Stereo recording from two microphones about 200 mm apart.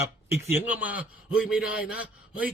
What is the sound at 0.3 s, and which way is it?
A man's voice, 10° right (ahead or behind).